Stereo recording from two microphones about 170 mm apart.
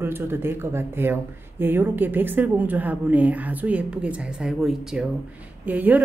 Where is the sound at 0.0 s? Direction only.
15° right (ahead or behind).